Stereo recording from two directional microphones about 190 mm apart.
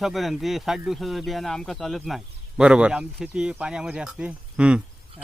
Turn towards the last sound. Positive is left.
turn(degrees=-5)  # may be behind; listen again after turning